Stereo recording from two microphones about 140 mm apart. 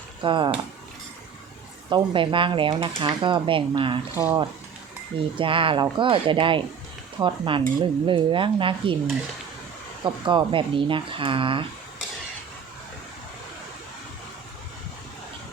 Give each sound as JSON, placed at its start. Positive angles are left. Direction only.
{"t": 0.2, "sound": "speech", "side_deg": -35}
{"t": 1.9, "sound": "speech", "side_deg": -35}
{"t": 4.1, "sound": "speech", "side_deg": -20}
{"t": 5.4, "sound": "speech", "side_deg": -40}
{"t": 10.0, "sound": "speech", "side_deg": -35}